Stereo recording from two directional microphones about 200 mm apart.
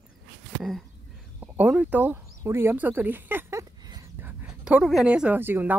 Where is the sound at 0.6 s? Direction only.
Centre (ahead or behind).